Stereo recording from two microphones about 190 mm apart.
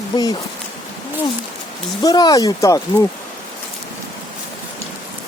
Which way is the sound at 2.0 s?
20° left (ahead or behind).